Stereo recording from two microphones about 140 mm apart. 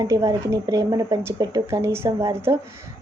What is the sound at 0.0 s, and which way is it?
A woman's voice, 25° right (ahead or behind).